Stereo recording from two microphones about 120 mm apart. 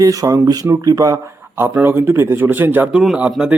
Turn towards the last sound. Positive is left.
turn(degrees=-10)  # may be behind; listen again after turning